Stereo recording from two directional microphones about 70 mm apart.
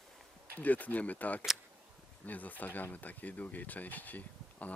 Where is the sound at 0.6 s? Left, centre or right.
Left.